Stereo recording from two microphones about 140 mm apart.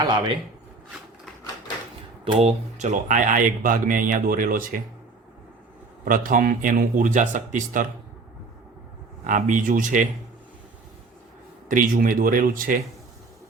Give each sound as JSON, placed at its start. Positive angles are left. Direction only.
{"t": 2.2, "sound": "speech", "side_deg": -45}
{"t": 6.1, "sound": "speech", "side_deg": -75}
{"t": 9.2, "sound": "speech", "side_deg": -70}
{"t": 11.7, "sound": "speech", "side_deg": -80}